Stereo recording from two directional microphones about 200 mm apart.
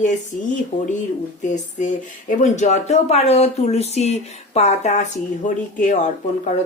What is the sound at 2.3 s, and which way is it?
A woman's voice, 35° left (ahead or behind).